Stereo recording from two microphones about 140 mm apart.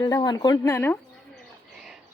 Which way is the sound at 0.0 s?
30° left (ahead or behind).